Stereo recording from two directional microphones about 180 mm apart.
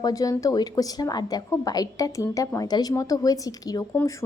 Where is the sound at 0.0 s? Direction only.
20° left (ahead or behind).